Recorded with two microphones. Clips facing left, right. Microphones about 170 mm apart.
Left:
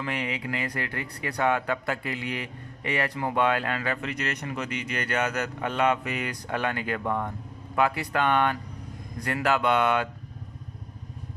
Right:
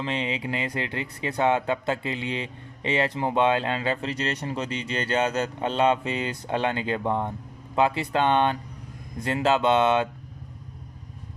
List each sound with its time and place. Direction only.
0.0 s speech: 25° right (ahead or behind)